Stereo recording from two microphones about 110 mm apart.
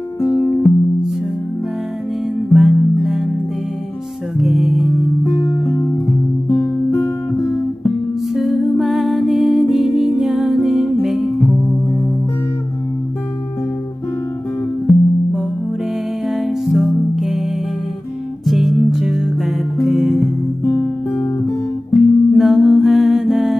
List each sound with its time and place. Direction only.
0.2 s music: 30° left (ahead or behind)
2.5 s music: centre (ahead or behind)
4.4 s music: centre (ahead or behind)
5.2 s music: 25° left (ahead or behind)
6.5 s guitar: 25° left (ahead or behind)
7.8 s music: centre (ahead or behind)
14.9 s music: centre (ahead or behind)
16.3 s music: centre (ahead or behind)
20.6 s music: 30° left (ahead or behind)
21.9 s music: centre (ahead or behind)